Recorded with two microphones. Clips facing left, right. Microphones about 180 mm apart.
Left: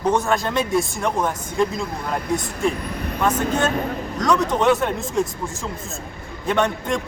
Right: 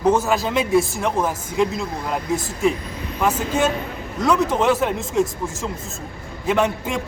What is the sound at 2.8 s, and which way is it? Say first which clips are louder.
Vehicle: left 3 dB; 60° left (ahead or behind).